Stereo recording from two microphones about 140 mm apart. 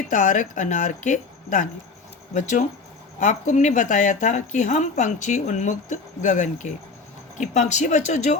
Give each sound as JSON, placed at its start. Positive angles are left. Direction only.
{"t": 0.1, "sound": "speech", "side_deg": 60}